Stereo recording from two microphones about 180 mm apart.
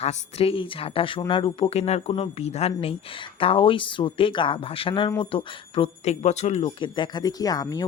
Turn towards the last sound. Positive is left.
turn(degrees=20)  # may be behind; listen again after turning